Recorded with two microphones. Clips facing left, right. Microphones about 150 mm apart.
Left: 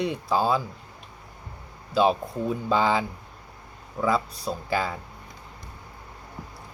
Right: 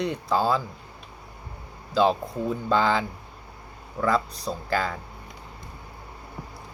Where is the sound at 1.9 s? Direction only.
5° left (ahead or behind).